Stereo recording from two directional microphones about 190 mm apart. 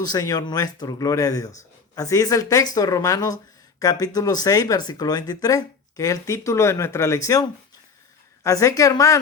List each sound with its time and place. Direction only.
0.0 s speech: 20° left (ahead or behind)
8.4 s speech: 15° left (ahead or behind)